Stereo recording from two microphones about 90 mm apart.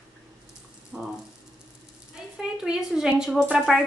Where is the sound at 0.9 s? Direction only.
15° right (ahead or behind).